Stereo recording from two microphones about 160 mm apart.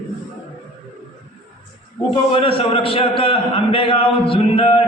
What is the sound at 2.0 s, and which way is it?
A man's voice, 35° left (ahead or behind).